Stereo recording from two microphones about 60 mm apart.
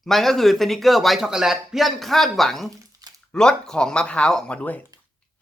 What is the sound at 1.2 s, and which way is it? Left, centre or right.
Speech, centre.